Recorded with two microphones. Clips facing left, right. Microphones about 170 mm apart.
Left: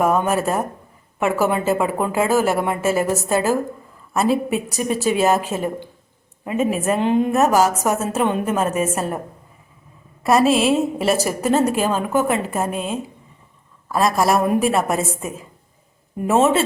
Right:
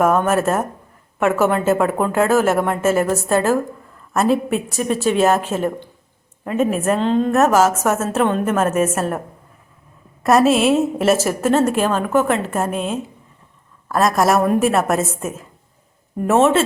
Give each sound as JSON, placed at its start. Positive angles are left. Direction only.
{"t": 0.0, "sound": "a woman's voice", "side_deg": 0}
{"t": 7.0, "sound": "a woman's voice", "side_deg": 15}
{"t": 7.3, "sound": "a woman's voice", "side_deg": 0}
{"t": 10.2, "sound": "a woman's voice", "side_deg": 0}